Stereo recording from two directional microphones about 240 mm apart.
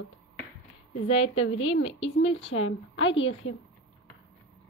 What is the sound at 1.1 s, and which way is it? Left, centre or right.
Speech, left.